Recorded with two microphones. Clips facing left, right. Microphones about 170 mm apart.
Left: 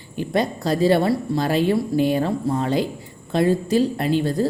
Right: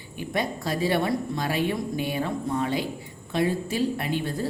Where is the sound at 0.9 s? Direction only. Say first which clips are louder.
Left 6 dB; 35° left (ahead or behind).